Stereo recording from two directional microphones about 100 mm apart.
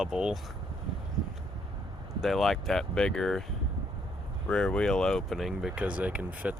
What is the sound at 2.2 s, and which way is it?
Speech, centre (ahead or behind).